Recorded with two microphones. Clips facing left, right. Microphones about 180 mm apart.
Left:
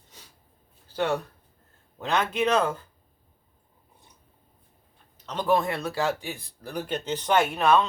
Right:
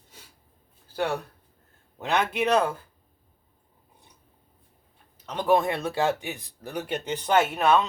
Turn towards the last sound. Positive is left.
turn(degrees=-5)  # may be behind; listen again after turning